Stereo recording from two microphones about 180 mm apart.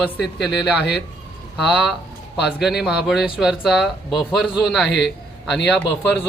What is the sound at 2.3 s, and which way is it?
A man's voice, centre (ahead or behind).